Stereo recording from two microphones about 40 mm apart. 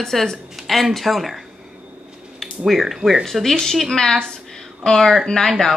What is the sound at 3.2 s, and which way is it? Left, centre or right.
Speech, centre.